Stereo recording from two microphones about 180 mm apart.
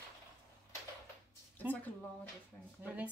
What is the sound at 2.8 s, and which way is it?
Speech, 10° right (ahead or behind).